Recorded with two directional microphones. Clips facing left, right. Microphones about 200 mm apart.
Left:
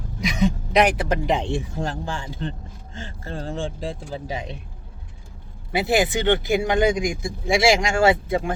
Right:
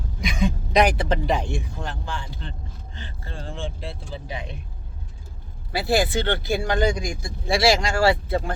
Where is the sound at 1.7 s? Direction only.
40° left (ahead or behind).